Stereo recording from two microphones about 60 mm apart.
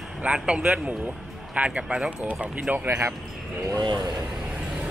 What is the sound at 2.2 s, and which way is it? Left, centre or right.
Speech, right.